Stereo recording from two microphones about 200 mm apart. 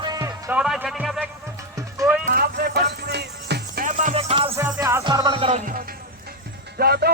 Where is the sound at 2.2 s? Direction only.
50° right (ahead or behind).